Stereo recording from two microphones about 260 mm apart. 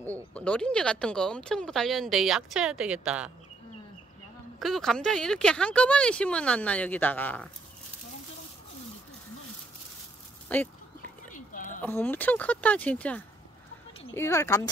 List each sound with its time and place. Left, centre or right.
0.0 s speech: centre
4.6 s speech: centre
10.5 s speech: centre
11.3 s a sound: left
11.8 s speech: centre